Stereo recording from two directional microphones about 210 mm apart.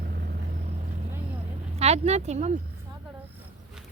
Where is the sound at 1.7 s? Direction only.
30° right (ahead or behind).